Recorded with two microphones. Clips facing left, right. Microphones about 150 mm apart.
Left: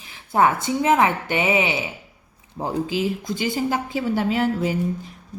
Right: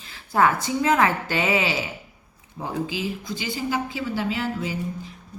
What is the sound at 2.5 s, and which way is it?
A woman's voice, 35° left (ahead or behind).